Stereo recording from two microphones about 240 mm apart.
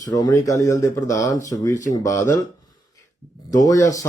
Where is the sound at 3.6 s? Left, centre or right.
Centre.